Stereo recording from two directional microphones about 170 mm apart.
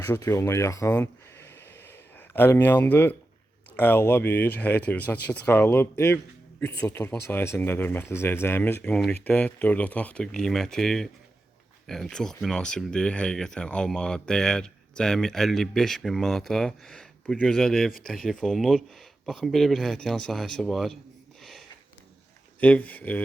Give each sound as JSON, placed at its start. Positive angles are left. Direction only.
{"t": 0.0, "sound": "speech", "side_deg": 15}
{"t": 1.5, "sound": "a sound", "side_deg": 15}
{"t": 3.8, "sound": "speech", "side_deg": 10}
{"t": 22.6, "sound": "speech", "side_deg": 10}